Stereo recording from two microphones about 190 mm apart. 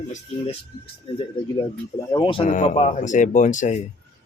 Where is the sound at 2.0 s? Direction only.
25° left (ahead or behind).